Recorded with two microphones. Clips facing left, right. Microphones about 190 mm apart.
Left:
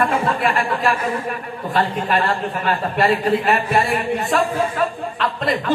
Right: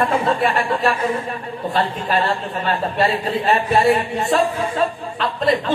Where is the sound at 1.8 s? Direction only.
25° right (ahead or behind).